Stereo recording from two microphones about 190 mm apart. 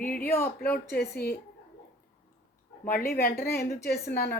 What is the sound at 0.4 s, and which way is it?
Speech, 50° left (ahead or behind).